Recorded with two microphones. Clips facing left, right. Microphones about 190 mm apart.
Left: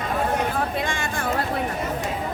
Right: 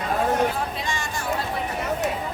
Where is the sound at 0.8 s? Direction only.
55° left (ahead or behind).